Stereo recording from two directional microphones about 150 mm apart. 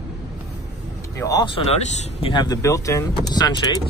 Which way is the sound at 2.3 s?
30° left (ahead or behind).